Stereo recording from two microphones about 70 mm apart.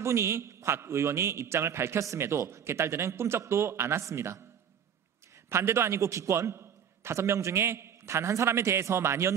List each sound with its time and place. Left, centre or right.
0.0 s a man's voice: right
5.5 s a man's voice: right